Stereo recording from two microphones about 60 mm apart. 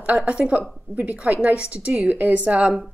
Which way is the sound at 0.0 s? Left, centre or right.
Right.